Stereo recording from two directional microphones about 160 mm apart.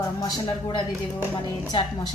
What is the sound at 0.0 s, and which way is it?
A woman's voice, 20° left (ahead or behind).